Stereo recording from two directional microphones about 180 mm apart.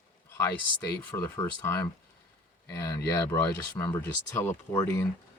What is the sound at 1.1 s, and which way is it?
Speech, 15° left (ahead or behind).